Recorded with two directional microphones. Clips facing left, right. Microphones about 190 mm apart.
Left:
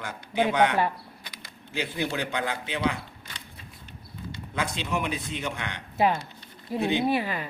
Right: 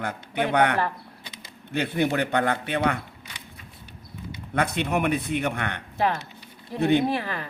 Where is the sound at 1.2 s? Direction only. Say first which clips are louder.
Right 2 dB; 25° right (ahead or behind).